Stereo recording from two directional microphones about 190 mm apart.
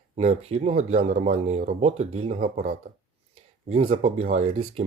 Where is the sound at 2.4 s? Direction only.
45° right (ahead or behind).